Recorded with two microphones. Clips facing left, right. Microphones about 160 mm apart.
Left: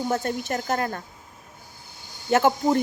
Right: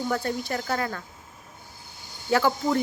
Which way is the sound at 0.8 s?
35° left (ahead or behind).